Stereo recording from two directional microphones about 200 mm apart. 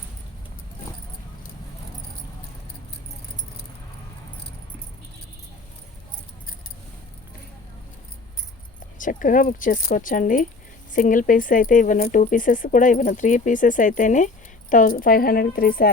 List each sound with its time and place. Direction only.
9.0 s speech: 40° left (ahead or behind)